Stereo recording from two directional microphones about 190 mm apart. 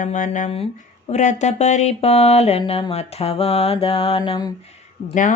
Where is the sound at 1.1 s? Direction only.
40° left (ahead or behind).